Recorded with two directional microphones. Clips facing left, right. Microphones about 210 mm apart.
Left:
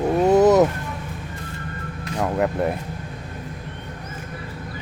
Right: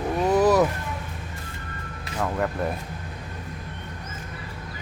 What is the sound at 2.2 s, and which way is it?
Speech, 15° left (ahead or behind).